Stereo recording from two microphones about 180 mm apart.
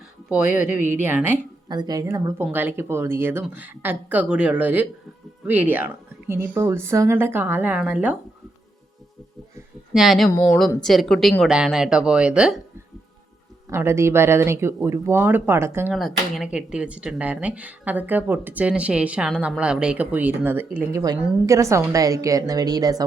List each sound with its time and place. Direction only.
0.4 s speech: 45° left (ahead or behind)
1.0 s speech: 10° right (ahead or behind)
1.6 s speech: 25° right (ahead or behind); by 8.1 s 5° right (ahead or behind)
9.9 s speech: centre (ahead or behind)
13.7 s speech: 15° right (ahead or behind)
15.9 s a woman's voice: centre (ahead or behind); by 23.0 s 20° right (ahead or behind)